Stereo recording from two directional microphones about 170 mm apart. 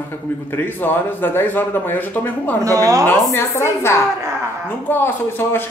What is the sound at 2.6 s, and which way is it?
Speech, 20° right (ahead or behind).